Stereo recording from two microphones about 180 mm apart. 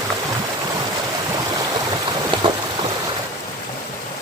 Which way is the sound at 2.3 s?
25° right (ahead or behind).